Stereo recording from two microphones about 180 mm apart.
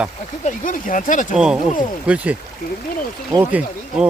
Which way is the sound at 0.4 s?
45° left (ahead or behind).